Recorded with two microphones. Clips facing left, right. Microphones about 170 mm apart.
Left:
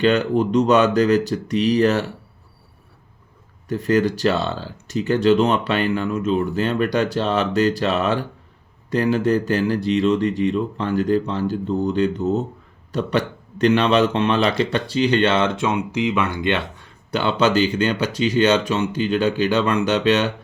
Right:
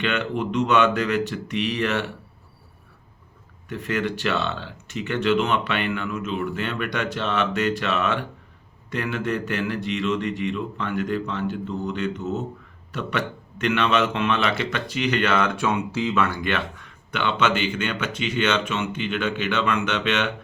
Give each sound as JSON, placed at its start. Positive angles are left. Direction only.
{"t": 0.0, "sound": "speech", "side_deg": 35}
{"t": 3.7, "sound": "speech", "side_deg": 35}